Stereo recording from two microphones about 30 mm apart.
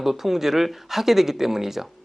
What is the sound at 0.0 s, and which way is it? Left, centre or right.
Speech, centre.